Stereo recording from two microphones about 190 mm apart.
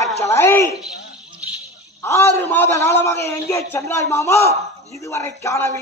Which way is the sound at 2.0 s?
15° left (ahead or behind).